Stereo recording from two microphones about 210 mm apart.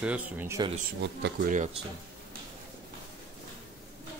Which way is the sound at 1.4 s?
35° right (ahead or behind).